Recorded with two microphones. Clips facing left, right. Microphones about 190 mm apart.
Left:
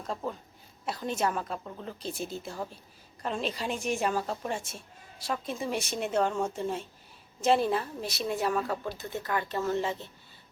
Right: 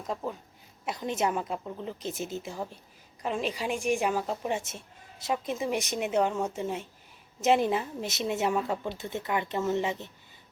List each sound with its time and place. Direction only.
0.0 s a woman's voice: 10° right (ahead or behind)